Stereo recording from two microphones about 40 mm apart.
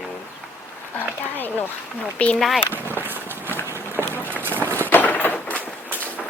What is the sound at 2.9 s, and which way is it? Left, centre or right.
Walk, right.